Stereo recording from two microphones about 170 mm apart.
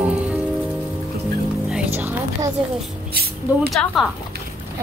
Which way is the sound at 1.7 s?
10° right (ahead or behind).